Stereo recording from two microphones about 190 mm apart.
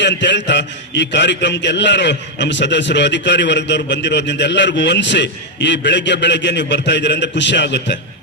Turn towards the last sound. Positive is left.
turn(degrees=65)  # may be behind; listen again after turning